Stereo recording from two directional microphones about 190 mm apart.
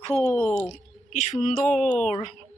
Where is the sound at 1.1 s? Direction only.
40° left (ahead or behind).